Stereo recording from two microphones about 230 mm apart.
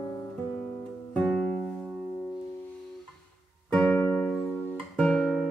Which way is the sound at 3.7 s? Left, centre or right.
Centre.